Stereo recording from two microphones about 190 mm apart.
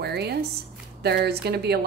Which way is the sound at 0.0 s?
60° right (ahead or behind).